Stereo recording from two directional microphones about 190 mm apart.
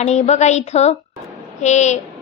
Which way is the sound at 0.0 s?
35° left (ahead or behind).